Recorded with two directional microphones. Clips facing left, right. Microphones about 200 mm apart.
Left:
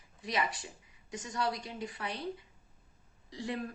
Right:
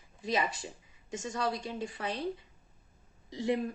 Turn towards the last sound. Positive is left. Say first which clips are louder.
# right 6 dB
turn(degrees=-20)  # may be behind; listen again after turning